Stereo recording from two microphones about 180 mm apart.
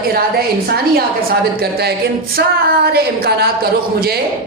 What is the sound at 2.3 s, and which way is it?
A woman's voice, 55° right (ahead or behind).